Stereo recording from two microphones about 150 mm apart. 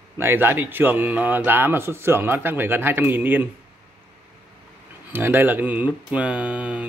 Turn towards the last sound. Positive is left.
turn(degrees=-10)  # may be behind; listen again after turning